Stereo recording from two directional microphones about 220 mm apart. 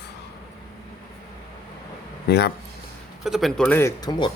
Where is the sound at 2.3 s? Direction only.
50° left (ahead or behind).